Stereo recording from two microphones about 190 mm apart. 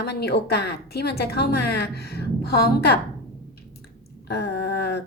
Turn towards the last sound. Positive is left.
turn(degrees=60)  # may be behind; listen again after turning